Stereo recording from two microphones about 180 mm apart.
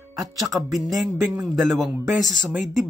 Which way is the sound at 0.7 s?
Centre (ahead or behind).